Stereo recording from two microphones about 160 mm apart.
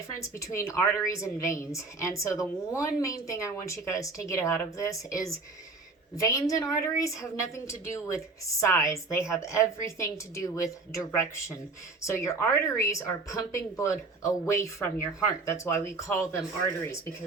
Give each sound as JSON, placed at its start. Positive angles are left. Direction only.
{"t": 0.2, "sound": "a woman's voice", "side_deg": 20}